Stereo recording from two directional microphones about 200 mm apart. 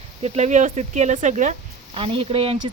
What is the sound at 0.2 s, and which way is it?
Speech, 35° right (ahead or behind).